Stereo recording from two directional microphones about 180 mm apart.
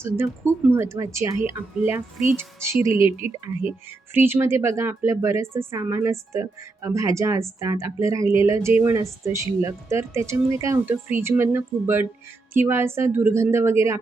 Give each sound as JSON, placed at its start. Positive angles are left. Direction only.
{"t": 0.0, "sound": "speech", "side_deg": -15}